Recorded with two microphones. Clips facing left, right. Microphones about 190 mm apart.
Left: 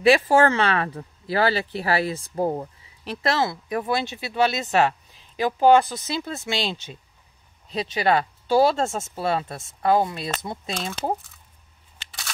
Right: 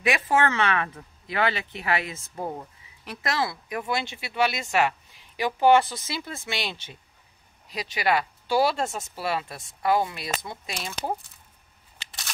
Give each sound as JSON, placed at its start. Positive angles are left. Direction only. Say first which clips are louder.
{"t": 0.0, "sound": "speech", "louder": "left 7 dB", "side_deg": 30}